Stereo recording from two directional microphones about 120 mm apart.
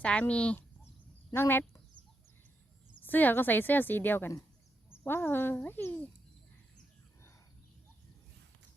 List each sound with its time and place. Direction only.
0.0 s speech: 10° left (ahead or behind)
2.9 s speech: 15° left (ahead or behind)